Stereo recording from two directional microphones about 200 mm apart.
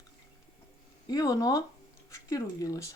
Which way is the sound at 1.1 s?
15° left (ahead or behind).